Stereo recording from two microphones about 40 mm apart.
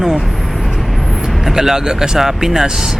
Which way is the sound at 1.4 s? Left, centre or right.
Centre.